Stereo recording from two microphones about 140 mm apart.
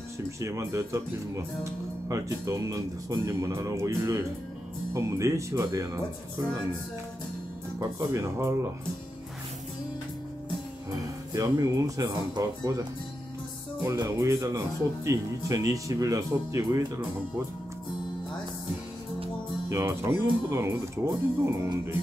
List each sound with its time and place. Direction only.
0.4 s speech: 20° right (ahead or behind)
7.8 s speech: 20° right (ahead or behind)
10.9 s speech: 25° right (ahead or behind)
13.8 s speech: 20° right (ahead or behind)
19.7 s speech: 20° right (ahead or behind)